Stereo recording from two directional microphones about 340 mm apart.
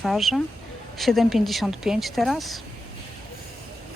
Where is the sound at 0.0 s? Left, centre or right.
Centre.